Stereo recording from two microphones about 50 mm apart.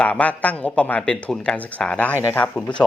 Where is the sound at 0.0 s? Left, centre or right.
Left.